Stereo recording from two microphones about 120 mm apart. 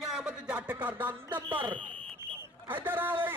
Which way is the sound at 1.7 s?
10° left (ahead or behind).